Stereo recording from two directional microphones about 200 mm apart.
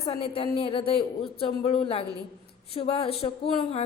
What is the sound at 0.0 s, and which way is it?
Speech, 30° left (ahead or behind).